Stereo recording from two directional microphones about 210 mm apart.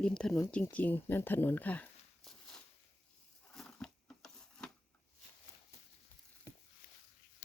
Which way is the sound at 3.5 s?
5° left (ahead or behind).